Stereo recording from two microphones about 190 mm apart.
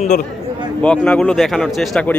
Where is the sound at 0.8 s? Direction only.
5° left (ahead or behind).